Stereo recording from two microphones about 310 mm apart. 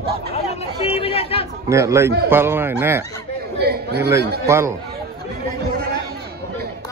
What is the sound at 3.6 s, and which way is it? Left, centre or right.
Speech, right.